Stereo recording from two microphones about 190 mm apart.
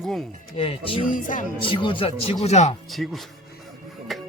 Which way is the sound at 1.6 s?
25° left (ahead or behind).